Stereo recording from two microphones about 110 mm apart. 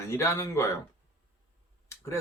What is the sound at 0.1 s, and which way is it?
Speech, 25° left (ahead or behind).